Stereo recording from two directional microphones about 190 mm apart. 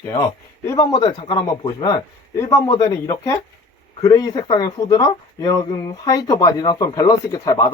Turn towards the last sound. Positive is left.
turn(degrees=15)  # may be behind; listen again after turning